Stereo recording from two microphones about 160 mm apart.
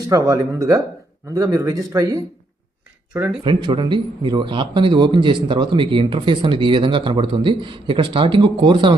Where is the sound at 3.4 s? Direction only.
30° right (ahead or behind).